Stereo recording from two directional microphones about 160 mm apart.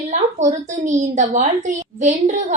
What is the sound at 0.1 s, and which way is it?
A woman's voice, 50° right (ahead or behind).